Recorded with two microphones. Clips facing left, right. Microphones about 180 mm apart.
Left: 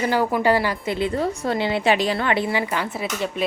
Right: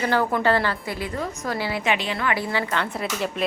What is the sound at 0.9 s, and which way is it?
A woman's voice, 30° left (ahead or behind).